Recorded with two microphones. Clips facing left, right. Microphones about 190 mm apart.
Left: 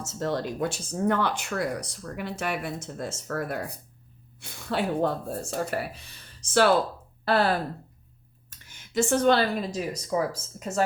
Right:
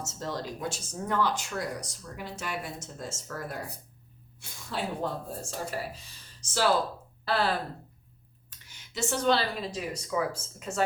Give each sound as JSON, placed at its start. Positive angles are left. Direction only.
{"t": 0.0, "sound": "speech", "side_deg": 60}
{"t": 7.3, "sound": "speech", "side_deg": 50}